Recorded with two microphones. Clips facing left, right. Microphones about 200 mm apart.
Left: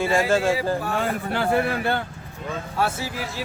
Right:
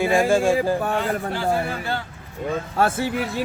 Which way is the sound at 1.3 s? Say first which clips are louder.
Left 1 dB; 60° left (ahead or behind).